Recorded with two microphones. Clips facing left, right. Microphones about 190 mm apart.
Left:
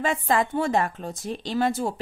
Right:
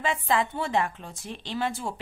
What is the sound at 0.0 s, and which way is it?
A woman's voice, 45° left (ahead or behind).